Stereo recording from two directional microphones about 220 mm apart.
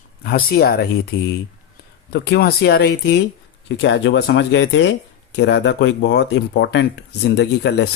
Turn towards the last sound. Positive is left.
turn(degrees=50)  # may be behind; listen again after turning